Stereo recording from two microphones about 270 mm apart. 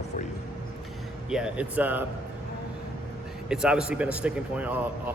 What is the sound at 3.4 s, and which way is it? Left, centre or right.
A man's voice, centre.